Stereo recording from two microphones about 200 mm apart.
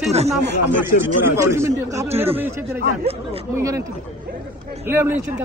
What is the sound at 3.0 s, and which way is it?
Speech, 30° right (ahead or behind).